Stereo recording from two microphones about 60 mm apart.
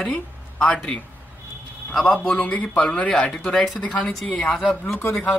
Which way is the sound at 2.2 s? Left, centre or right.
Left.